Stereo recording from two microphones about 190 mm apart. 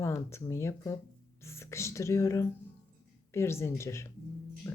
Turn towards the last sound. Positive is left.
turn(degrees=15)  # may be behind; listen again after turning